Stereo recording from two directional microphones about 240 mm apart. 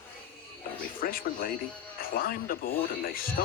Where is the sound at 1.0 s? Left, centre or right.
Left.